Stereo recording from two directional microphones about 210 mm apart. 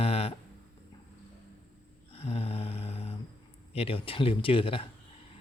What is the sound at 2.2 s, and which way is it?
Mantra, 30° left (ahead or behind).